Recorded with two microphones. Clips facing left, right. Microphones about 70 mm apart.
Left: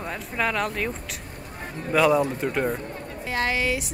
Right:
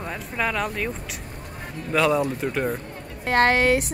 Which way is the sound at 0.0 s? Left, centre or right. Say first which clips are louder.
Even; centre.